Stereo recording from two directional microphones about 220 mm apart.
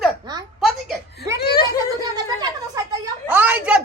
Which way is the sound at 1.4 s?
45° left (ahead or behind).